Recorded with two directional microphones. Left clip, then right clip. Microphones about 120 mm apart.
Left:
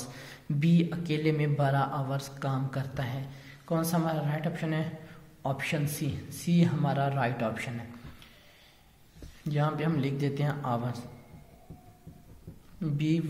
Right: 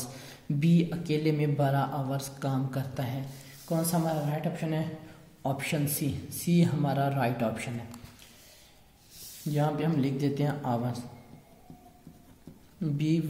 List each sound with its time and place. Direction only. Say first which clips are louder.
0.0 s a woman's voice: right 1 dB; 25° right (ahead or behind)
9.5 s speech: right 1 dB; 20° right (ahead or behind)
12.8 s speech: right 1 dB; 25° right (ahead or behind)